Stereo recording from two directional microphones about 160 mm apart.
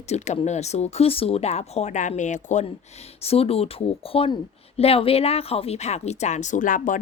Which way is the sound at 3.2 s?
40° left (ahead or behind).